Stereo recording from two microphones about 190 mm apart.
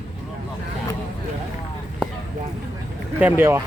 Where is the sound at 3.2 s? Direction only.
10° right (ahead or behind).